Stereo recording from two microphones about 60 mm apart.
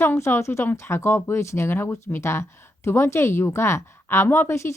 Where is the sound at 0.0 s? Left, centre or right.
Left.